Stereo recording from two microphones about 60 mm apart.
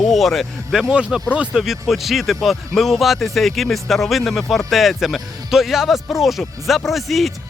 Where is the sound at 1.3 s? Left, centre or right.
Right.